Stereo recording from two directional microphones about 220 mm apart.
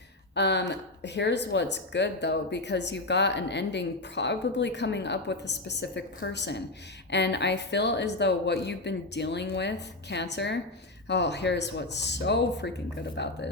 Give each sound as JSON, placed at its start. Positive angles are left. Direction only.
{"t": 0.3, "sound": "speech", "side_deg": 50}